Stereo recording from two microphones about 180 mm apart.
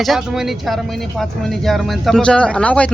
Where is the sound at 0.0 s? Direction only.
Centre (ahead or behind).